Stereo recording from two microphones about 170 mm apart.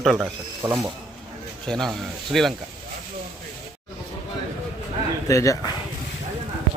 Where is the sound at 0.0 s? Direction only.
Centre (ahead or behind).